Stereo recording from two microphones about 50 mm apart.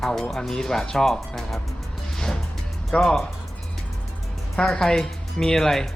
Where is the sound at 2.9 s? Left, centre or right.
Centre.